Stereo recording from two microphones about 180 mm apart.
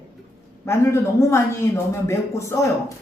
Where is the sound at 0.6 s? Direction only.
15° left (ahead or behind).